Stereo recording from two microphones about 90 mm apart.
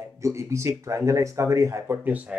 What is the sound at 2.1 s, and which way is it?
Speech, 15° right (ahead or behind).